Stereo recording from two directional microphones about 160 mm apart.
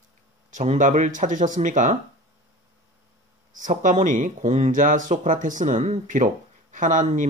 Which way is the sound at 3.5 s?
55° right (ahead or behind).